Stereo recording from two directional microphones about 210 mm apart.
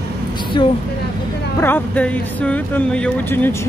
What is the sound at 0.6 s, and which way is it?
Speech, 20° left (ahead or behind).